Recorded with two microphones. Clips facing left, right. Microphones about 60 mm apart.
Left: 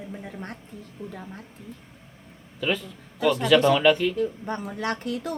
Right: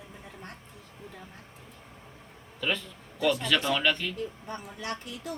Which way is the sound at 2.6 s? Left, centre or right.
Centre.